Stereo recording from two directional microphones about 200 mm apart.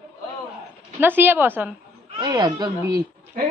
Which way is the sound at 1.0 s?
10° right (ahead or behind).